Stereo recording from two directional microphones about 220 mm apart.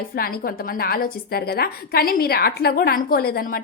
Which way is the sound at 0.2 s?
40° left (ahead or behind).